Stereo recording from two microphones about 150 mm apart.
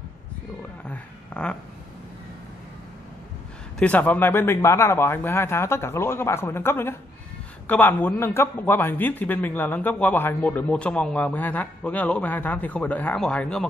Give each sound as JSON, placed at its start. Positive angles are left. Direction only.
{"t": 0.8, "sound": "speech", "side_deg": 10}
{"t": 3.8, "sound": "a man's voice", "side_deg": 10}